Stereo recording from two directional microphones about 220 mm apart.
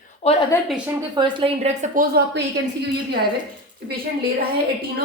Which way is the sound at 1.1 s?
25° right (ahead or behind).